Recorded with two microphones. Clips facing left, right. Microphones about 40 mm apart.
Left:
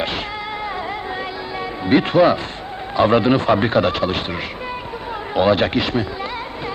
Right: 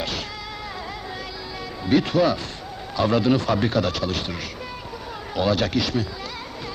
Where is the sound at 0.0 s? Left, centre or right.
Left.